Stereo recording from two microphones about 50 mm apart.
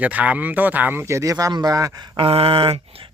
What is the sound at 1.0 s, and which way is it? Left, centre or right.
Speech, right.